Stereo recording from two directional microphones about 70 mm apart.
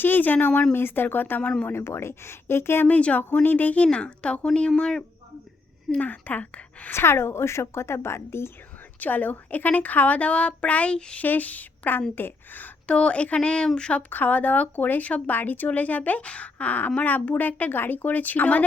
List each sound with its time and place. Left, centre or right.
0.0 s speech: left
1.7 s a woman's voice: left
2.8 s speech: left
5.9 s speech: left
6.9 s a woman's voice: left
9.0 s speech: left
12.9 s speech: centre
14.1 s speech: left